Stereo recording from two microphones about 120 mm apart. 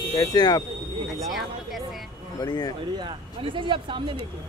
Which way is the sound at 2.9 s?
45° right (ahead or behind).